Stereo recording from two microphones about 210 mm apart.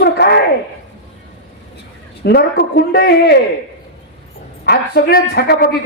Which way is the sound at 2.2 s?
50° left (ahead or behind).